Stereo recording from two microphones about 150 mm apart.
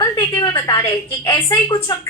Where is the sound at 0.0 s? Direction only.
25° left (ahead or behind).